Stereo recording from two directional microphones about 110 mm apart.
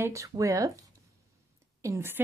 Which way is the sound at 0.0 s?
30° right (ahead or behind).